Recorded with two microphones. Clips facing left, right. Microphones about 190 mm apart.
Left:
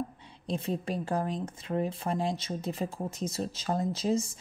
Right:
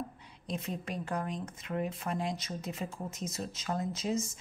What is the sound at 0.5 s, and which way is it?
Speech, 30° left (ahead or behind).